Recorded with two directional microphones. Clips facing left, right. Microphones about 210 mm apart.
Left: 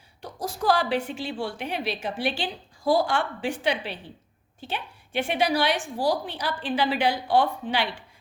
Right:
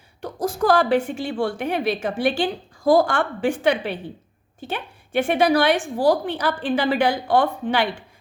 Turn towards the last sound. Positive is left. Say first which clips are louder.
# right 5 dB
turn(degrees=-50)  # may be behind; listen again after turning